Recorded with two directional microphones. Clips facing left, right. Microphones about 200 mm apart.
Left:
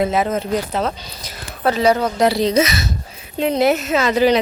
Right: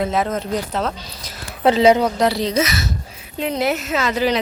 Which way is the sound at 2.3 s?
15° left (ahead or behind).